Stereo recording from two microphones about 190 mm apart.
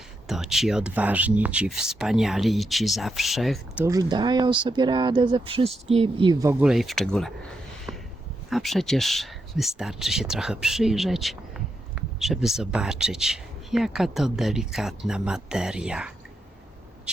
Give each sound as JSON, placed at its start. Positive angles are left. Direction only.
{"t": 0.3, "sound": "speech", "side_deg": 0}
{"t": 3.8, "sound": "speech", "side_deg": -20}
{"t": 6.5, "sound": "speech", "side_deg": -5}
{"t": 8.4, "sound": "speech", "side_deg": 0}